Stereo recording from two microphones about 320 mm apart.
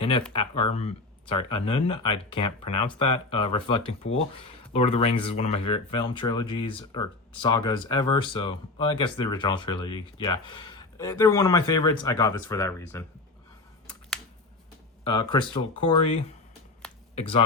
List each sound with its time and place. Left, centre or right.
0.0 s speech: centre
15.0 s speech: centre
17.2 s speech: centre